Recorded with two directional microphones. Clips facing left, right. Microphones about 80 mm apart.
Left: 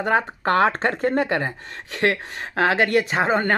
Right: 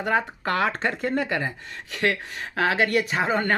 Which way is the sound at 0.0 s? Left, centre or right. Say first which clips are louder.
Left 3 dB; left.